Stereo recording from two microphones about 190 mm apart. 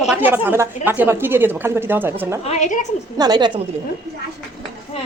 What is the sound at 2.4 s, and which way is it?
Speech, 35° left (ahead or behind).